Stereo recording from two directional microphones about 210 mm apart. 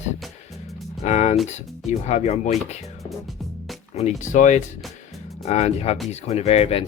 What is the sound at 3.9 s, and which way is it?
Speech, 35° left (ahead or behind).